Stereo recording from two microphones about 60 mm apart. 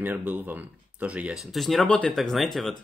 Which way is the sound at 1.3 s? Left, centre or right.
Centre.